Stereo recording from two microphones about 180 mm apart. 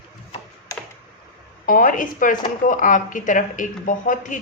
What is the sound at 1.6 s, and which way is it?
A woman's voice, 50° left (ahead or behind).